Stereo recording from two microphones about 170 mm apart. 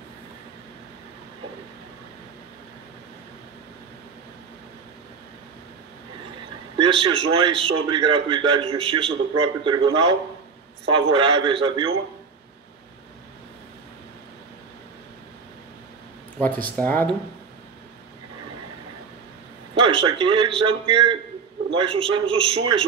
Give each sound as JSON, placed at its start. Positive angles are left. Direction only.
{"t": 6.8, "sound": "a man's voice", "side_deg": -30}
{"t": 16.3, "sound": "speech", "side_deg": 10}
{"t": 19.7, "sound": "a man's voice", "side_deg": -30}